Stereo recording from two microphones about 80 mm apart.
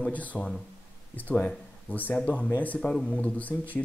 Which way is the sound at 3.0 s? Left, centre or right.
Centre.